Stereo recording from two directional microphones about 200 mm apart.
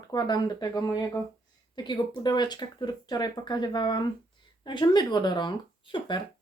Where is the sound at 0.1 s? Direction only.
20° left (ahead or behind).